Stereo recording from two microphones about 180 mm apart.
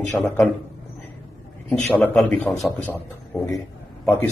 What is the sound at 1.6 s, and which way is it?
A man's voice, 5° left (ahead or behind).